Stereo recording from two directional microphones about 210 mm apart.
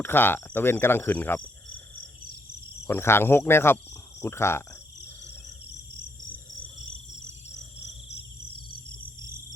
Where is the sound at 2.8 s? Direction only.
10° left (ahead or behind).